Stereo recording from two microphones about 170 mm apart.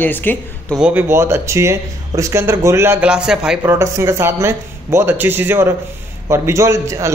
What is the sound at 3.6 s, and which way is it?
Speech, 15° right (ahead or behind).